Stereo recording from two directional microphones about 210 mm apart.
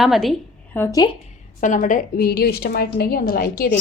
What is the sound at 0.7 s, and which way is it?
Speech, 15° left (ahead or behind).